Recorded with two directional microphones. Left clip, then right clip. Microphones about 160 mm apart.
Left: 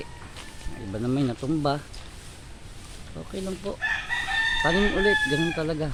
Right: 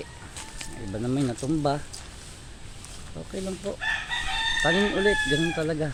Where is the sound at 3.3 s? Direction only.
5° left (ahead or behind).